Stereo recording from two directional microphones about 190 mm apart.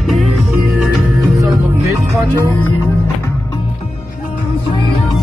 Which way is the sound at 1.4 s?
15° right (ahead or behind).